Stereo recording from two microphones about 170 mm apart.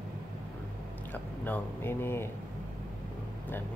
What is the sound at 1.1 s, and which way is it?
Speech, 10° left (ahead or behind).